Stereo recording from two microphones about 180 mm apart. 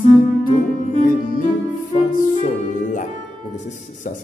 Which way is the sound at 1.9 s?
45° left (ahead or behind).